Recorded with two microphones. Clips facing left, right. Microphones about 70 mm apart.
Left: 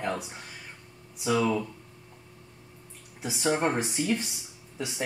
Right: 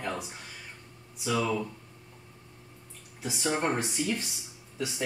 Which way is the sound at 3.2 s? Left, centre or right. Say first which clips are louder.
Left 3 dB; centre.